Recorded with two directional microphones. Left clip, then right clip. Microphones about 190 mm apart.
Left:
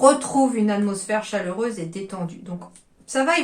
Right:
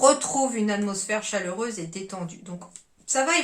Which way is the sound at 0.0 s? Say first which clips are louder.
Left 4 dB; 10° right (ahead or behind).